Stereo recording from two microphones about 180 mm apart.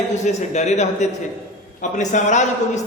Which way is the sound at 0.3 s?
40° left (ahead or behind).